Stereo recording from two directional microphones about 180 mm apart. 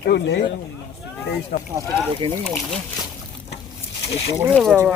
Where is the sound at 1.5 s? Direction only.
65° left (ahead or behind).